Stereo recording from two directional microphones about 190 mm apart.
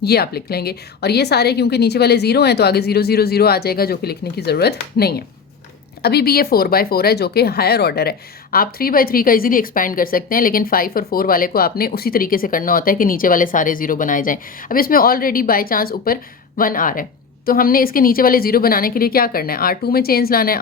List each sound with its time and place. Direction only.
0.0 s a woman's voice: 55° left (ahead or behind)